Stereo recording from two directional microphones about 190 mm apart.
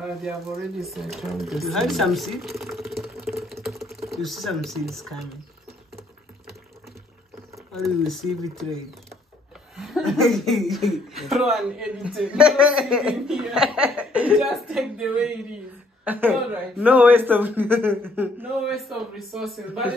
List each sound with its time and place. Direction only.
0.0 s speech: centre (ahead or behind)
7.7 s speech: centre (ahead or behind)
9.8 s speech: centre (ahead or behind)